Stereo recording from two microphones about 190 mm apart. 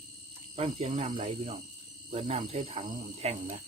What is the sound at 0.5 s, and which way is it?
Speech, 30° right (ahead or behind).